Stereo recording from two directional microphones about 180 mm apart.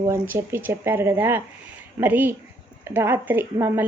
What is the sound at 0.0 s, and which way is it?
A woman's voice, 15° right (ahead or behind).